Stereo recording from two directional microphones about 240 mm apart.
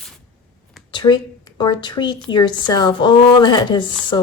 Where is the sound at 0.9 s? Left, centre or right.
Centre.